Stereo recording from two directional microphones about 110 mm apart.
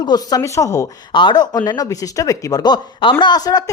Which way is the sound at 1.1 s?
45° left (ahead or behind).